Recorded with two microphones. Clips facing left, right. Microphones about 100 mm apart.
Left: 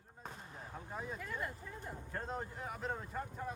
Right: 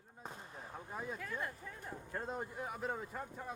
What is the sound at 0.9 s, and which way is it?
Speech, 5° right (ahead or behind).